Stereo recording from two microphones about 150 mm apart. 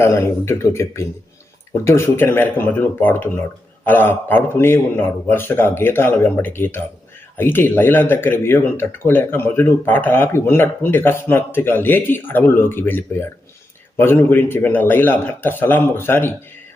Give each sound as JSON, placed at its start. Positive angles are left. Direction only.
{"t": 0.0, "sound": "speech", "side_deg": 15}